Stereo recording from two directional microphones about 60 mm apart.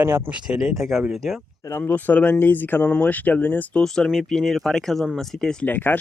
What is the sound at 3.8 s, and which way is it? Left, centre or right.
Speech, centre.